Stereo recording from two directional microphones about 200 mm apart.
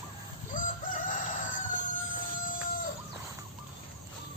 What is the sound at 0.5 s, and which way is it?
Crowing, 40° left (ahead or behind).